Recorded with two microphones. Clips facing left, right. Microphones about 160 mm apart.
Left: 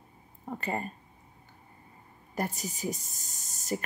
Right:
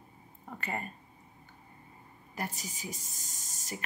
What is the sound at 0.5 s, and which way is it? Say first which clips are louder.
Speech: left 5 dB; 30° left (ahead or behind).